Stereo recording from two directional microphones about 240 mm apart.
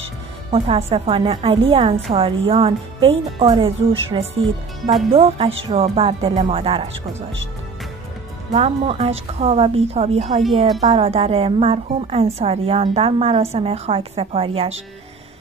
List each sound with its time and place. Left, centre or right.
0.5 s a woman's voice: right
8.5 s a woman's voice: right